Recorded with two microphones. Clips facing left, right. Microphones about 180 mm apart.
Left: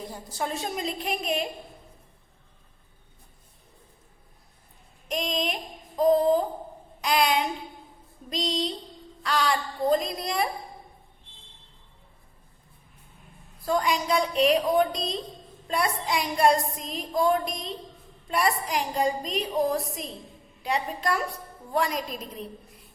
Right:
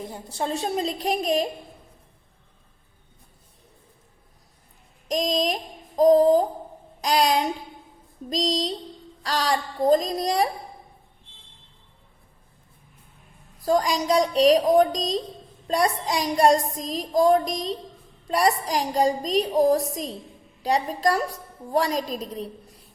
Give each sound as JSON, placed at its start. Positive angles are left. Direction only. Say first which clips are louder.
{"t": 0.3, "sound": "a woman's voice", "louder": "right 5 dB", "side_deg": -30}
{"t": 5.0, "sound": "a woman's voice", "louder": "right 5 dB", "side_deg": -35}
{"t": 13.7, "sound": "a woman's voice", "louder": "right 4 dB", "side_deg": -40}